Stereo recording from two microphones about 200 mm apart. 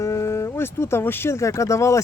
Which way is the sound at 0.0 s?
15° left (ahead or behind).